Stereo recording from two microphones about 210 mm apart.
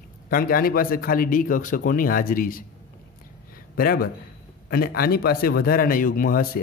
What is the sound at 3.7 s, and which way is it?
Speech, 45° left (ahead or behind).